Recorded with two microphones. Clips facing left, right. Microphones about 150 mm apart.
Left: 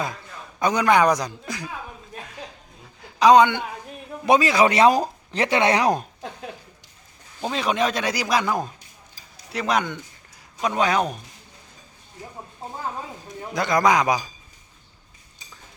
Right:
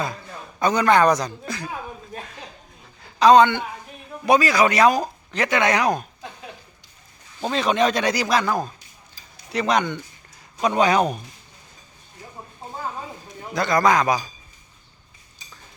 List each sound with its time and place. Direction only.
0.6 s speech: 10° left (ahead or behind)
3.0 s a sound: 15° left (ahead or behind)
4.3 s speech: 25° left (ahead or behind)
7.4 s speech: 10° left (ahead or behind)
9.5 s speech: 5° left (ahead or behind)
13.5 s speech: 15° left (ahead or behind)